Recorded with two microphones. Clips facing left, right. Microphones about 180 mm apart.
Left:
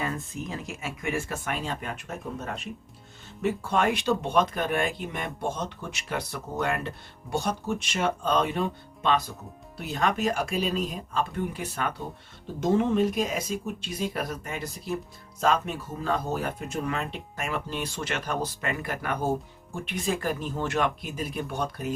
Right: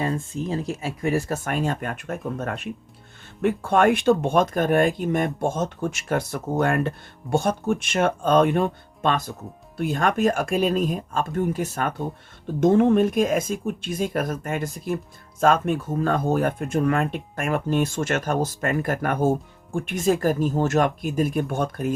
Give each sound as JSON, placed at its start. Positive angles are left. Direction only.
{"t": 0.0, "sound": "speech", "side_deg": -30}